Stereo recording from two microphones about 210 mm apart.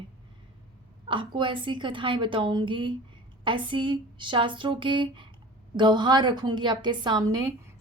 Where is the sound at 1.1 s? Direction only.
25° right (ahead or behind).